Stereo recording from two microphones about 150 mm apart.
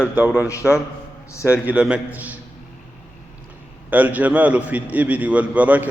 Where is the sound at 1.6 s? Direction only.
10° right (ahead or behind).